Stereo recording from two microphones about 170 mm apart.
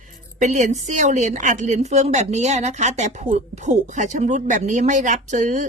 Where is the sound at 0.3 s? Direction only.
45° right (ahead or behind).